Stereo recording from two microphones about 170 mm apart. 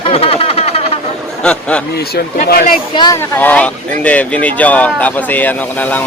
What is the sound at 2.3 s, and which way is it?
Speech, 60° left (ahead or behind).